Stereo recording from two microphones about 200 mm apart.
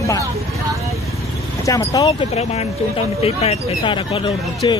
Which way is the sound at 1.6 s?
15° left (ahead or behind).